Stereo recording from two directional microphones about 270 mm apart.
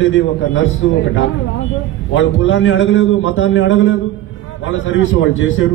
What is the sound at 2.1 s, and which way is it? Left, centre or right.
A man's voice, left.